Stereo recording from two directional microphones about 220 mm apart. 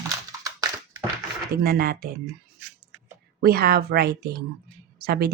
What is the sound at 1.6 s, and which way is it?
Speech, 45° right (ahead or behind).